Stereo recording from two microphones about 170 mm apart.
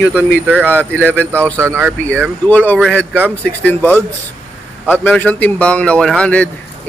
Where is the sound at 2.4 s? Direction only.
10° left (ahead or behind).